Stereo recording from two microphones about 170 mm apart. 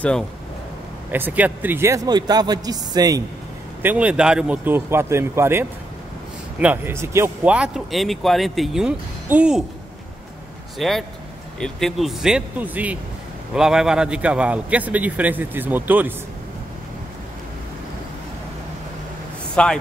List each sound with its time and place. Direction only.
1.1 s a man's voice: 10° right (ahead or behind)
3.8 s a man's voice: 10° right (ahead or behind)
10.8 s a man's voice: centre (ahead or behind)
19.5 s a man's voice: 5° left (ahead or behind)